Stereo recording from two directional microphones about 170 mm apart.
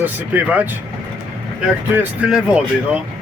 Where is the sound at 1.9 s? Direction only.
5° right (ahead or behind).